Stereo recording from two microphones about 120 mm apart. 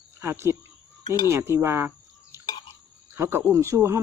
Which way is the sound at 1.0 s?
35° left (ahead or behind).